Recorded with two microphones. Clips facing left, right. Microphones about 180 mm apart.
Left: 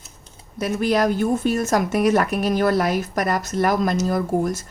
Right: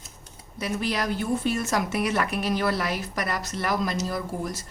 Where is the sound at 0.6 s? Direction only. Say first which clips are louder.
Left 8 dB; 50° left (ahead or behind).